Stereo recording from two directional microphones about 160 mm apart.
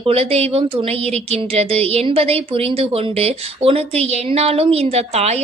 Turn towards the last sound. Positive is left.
turn(degrees=-40)  # may be behind; listen again after turning